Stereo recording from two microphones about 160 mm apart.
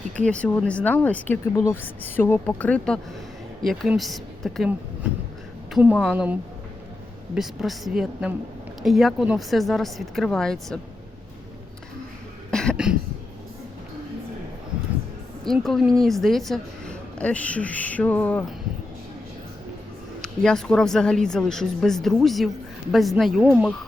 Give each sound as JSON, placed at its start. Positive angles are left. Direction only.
{"t": 0.3, "sound": "a woman's voice", "side_deg": 5}
{"t": 5.7, "sound": "speech", "side_deg": -5}
{"t": 7.3, "sound": "speech", "side_deg": 0}
{"t": 12.5, "sound": "cough", "side_deg": 5}
{"t": 12.7, "sound": "speech", "side_deg": -5}
{"t": 15.4, "sound": "a woman's voice", "side_deg": 0}
{"t": 20.2, "sound": "speech", "side_deg": 5}